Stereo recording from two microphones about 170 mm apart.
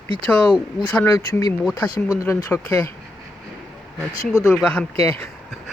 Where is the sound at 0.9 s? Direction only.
15° left (ahead or behind).